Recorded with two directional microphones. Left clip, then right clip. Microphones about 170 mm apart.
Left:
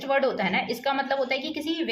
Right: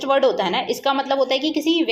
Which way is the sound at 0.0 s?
5° right (ahead or behind).